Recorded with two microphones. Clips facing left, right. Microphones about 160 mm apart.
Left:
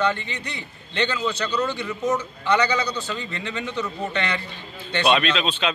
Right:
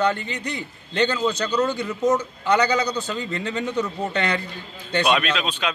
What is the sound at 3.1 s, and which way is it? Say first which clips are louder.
A man's voice: right 4 dB; 40° right (ahead or behind).